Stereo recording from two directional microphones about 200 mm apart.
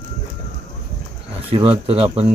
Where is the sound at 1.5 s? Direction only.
30° right (ahead or behind).